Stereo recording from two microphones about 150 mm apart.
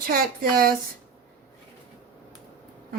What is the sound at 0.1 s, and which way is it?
Speech, 80° right.